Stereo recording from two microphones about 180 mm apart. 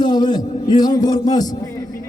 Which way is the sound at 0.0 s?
25° left (ahead or behind).